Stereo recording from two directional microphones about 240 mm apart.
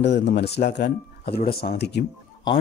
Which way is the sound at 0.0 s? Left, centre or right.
Left.